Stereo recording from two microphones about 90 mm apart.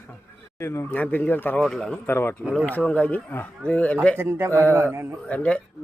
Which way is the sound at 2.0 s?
25° left (ahead or behind).